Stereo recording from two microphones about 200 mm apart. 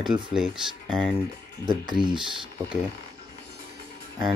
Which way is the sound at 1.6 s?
20° right (ahead or behind).